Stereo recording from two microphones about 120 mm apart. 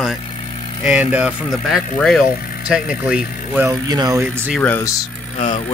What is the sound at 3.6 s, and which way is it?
Speech, 35° right (ahead or behind).